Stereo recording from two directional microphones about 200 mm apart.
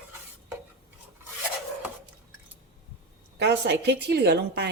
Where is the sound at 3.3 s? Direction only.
55° right (ahead or behind).